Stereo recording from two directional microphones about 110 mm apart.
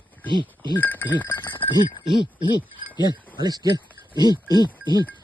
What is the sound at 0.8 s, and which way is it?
Speech, 15° left (ahead or behind).